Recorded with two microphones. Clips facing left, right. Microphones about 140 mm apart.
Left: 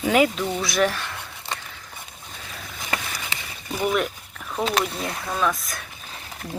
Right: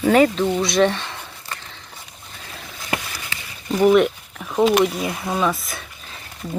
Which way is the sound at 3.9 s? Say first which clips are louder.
Right 10 dB; 5° right (ahead or behind).